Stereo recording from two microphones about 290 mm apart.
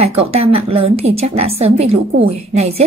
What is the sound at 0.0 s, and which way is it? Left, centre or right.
A woman's voice, right.